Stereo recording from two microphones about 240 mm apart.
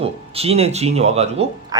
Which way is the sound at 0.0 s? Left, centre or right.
Right.